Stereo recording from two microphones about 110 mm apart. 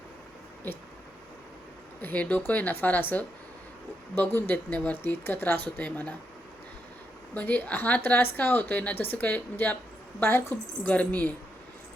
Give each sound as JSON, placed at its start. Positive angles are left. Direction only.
{"t": 2.0, "sound": "speech", "side_deg": 15}
{"t": 7.3, "sound": "a woman's voice", "side_deg": 15}
{"t": 10.8, "sound": "speech", "side_deg": 15}